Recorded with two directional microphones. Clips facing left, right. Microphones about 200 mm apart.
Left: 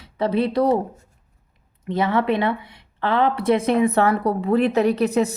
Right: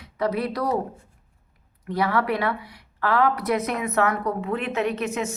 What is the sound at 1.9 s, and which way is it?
A woman's voice, 25° left (ahead or behind).